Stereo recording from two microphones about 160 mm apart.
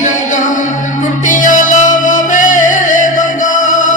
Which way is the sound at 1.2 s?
55° left (ahead or behind).